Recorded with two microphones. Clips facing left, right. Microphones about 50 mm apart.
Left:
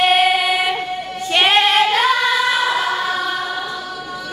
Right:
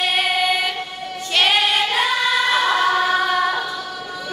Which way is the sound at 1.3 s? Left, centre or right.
Centre.